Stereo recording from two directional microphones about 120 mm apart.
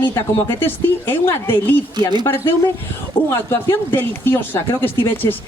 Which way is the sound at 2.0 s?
35° right (ahead or behind).